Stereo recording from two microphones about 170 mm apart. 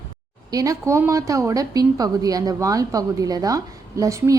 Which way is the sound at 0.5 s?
20° right (ahead or behind).